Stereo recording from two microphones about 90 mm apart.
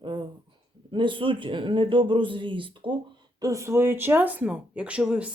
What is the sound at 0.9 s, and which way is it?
Speech, 65° right (ahead or behind).